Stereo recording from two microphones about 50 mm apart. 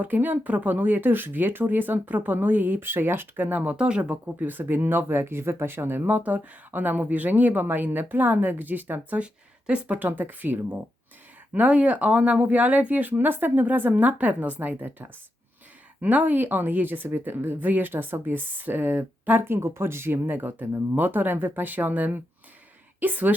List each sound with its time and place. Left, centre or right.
0.0 s speech: right
3.8 s speech: centre
4.1 s speech: right
6.1 s speech: right
9.2 s speech: right
10.1 s speech: right
19.5 s speech: right